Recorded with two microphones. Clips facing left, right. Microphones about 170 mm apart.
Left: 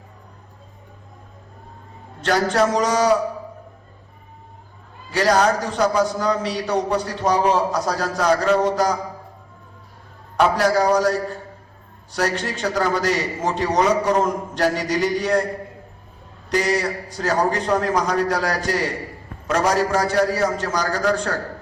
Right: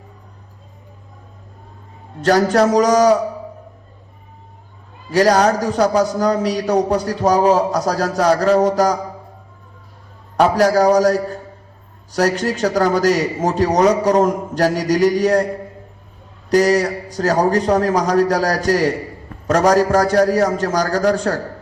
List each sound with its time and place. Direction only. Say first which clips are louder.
2.2 s a man's voice: right 5 dB; 40° right (ahead or behind)
5.1 s a man's voice: right 4 dB; 40° right (ahead or behind)
10.3 s a man's voice: right 4 dB; 40° right (ahead or behind)
16.5 s a man's voice: right 7 dB; 40° right (ahead or behind)